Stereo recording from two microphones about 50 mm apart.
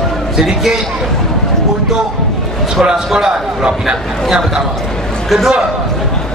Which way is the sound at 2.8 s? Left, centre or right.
Centre.